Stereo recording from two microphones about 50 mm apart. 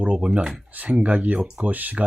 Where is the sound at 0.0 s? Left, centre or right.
Right.